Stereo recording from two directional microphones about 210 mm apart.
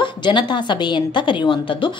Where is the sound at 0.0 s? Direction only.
20° left (ahead or behind).